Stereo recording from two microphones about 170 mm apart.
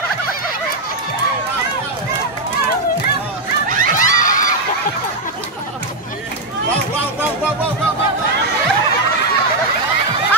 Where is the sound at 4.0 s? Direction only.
50° left (ahead or behind).